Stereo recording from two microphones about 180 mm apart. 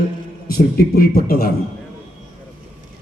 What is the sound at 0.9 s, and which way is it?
Speech, 55° left (ahead or behind).